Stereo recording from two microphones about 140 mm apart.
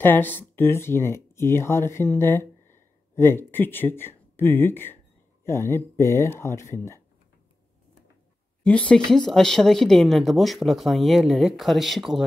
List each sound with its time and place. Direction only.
0.0 s speech: 15° left (ahead or behind)
8.6 s speech: 10° left (ahead or behind)